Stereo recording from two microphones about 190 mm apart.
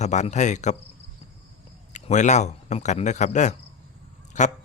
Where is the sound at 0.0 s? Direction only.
40° left (ahead or behind).